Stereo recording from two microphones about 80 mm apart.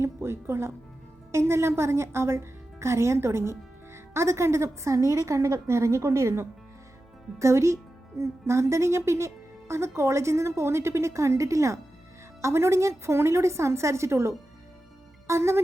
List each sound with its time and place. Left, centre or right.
0.0 s a woman's voice: right